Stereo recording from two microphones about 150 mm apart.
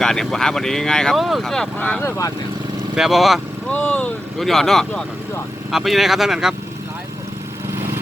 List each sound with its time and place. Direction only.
0.0 s speech: 5° left (ahead or behind); by 2.3 s 20° left (ahead or behind)
2.9 s speech: centre (ahead or behind)